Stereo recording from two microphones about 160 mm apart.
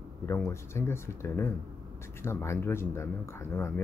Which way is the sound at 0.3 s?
15° left (ahead or behind).